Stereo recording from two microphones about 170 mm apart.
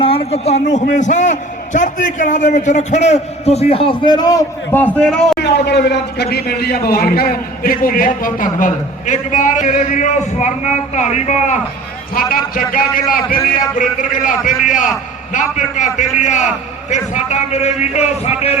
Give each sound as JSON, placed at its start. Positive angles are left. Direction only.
{"t": 0.0, "sound": "a man's voice", "side_deg": 35}
{"t": 4.7, "sound": "a man's voice", "side_deg": 10}
{"t": 5.4, "sound": "a man's voice", "side_deg": 75}
{"t": 12.1, "sound": "a man's voice", "side_deg": 55}